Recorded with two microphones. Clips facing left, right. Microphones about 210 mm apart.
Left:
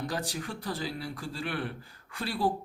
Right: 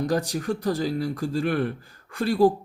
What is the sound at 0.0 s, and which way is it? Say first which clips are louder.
Speech: right 9 dB; 45° right (ahead or behind).